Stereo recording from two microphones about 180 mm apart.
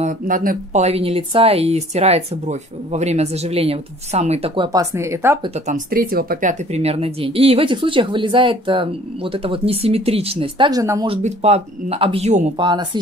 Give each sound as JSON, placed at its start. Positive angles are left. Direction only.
{"t": 0.0, "sound": "speech", "side_deg": -50}
{"t": 4.7, "sound": "a woman's voice", "side_deg": -15}
{"t": 5.4, "sound": "speech", "side_deg": -35}
{"t": 5.9, "sound": "speech", "side_deg": -55}
{"t": 6.7, "sound": "speech", "side_deg": -35}
{"t": 11.1, "sound": "speech", "side_deg": -35}
{"t": 12.5, "sound": "speech", "side_deg": -25}